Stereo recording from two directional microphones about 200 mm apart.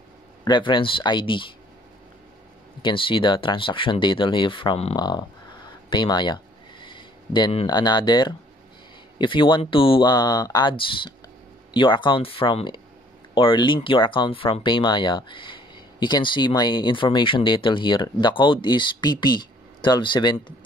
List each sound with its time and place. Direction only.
0.5 s speech: 25° left (ahead or behind)
2.8 s speech: 25° left (ahead or behind)